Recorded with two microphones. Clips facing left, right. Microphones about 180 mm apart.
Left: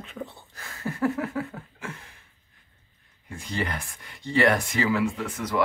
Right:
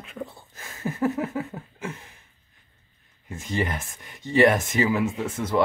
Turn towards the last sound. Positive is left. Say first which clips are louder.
# right 3 dB
turn(degrees=-25)  # may be behind; listen again after turning